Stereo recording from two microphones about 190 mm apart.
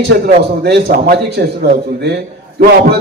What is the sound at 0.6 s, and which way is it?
A man's voice, 55° right (ahead or behind).